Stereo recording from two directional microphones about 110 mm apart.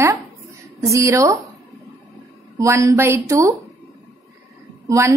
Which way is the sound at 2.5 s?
30° right (ahead or behind).